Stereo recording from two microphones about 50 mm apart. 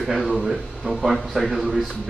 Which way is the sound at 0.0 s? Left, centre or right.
Centre.